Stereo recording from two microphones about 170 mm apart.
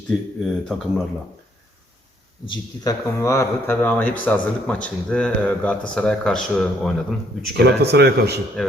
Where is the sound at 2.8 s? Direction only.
20° left (ahead or behind).